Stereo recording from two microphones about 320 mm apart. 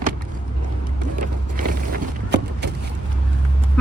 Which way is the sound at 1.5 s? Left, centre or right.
Right.